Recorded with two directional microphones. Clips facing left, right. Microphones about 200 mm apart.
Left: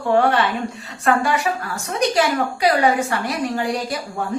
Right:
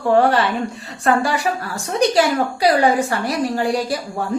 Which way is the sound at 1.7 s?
30° right (ahead or behind).